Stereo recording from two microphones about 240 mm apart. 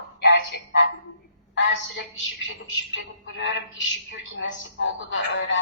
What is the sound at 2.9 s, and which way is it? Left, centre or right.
A woman's voice, left.